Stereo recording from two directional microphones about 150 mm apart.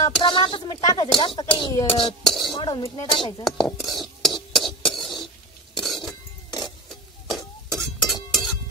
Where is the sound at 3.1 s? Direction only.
35° left (ahead or behind).